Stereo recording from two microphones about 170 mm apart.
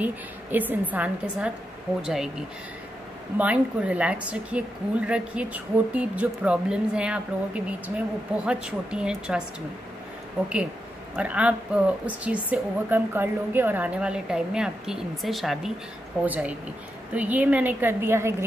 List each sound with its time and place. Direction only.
0.0 s a woman's voice: 10° right (ahead or behind)
11.1 s a woman's voice: 10° right (ahead or behind)